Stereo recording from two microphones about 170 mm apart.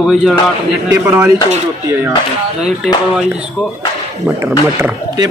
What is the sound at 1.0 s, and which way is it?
Speech, 15° right (ahead or behind).